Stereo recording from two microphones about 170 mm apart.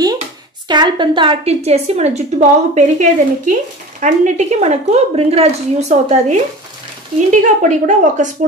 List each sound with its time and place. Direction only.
0.7 s a woman's voice: 25° right (ahead or behind); by 8.3 s 45° right (ahead or behind)